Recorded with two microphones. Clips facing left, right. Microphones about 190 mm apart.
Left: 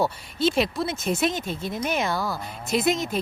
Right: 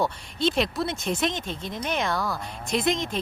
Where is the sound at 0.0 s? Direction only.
5° left (ahead or behind).